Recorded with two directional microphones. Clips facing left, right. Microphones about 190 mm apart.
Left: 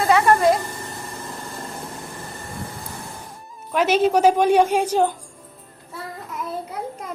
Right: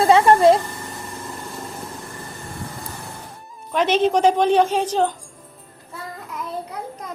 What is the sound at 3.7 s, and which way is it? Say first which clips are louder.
Speech: even; 5° left (ahead or behind).